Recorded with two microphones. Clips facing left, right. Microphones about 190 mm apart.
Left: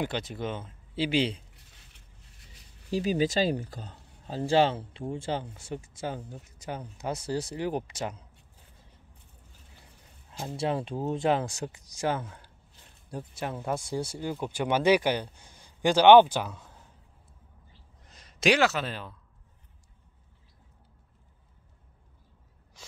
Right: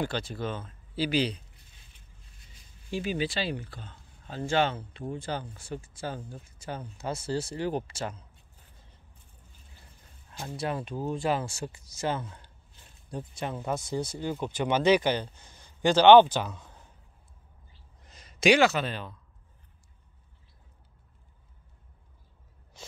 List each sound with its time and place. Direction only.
0.0 s speech: 20° left (ahead or behind)
1.5 s a sound: 75° left (ahead or behind)
2.9 s speech: 40° left (ahead or behind); by 8.3 s 15° left (ahead or behind)
10.5 s speech: 25° left (ahead or behind); by 16.8 s 5° left (ahead or behind)
18.0 s speech: centre (ahead or behind)
22.8 s gasp: 25° right (ahead or behind)